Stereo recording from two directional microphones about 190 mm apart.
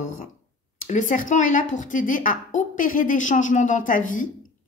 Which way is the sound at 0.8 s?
40° left (ahead or behind).